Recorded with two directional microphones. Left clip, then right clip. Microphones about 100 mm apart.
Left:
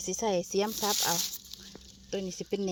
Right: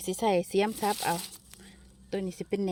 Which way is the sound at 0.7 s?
35° right (ahead or behind).